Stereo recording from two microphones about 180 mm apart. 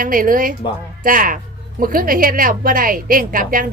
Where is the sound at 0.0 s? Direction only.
50° right (ahead or behind).